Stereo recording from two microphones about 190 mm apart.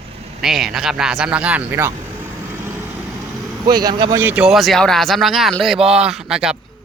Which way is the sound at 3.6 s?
20° right (ahead or behind).